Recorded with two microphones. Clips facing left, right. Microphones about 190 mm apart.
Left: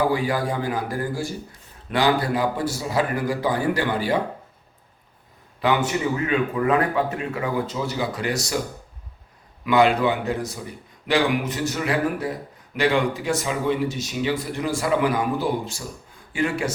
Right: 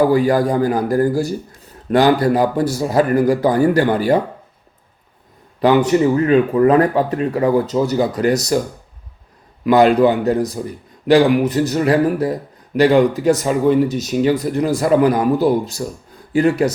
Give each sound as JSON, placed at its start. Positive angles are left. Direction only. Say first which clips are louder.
{"t": 0.1, "sound": "speech", "louder": "right 9 dB", "side_deg": -40}
{"t": 5.5, "sound": "speech", "louder": "right 9 dB", "side_deg": -40}
{"t": 9.6, "sound": "speech", "louder": "right 7 dB", "side_deg": -40}